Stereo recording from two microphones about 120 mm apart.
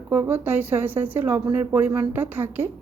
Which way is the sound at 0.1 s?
15° right (ahead or behind).